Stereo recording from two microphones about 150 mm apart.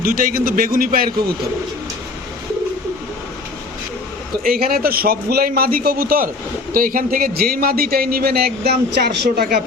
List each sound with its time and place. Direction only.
0.0 s a man's voice: 70° right (ahead or behind)
4.4 s a man's voice: 85° right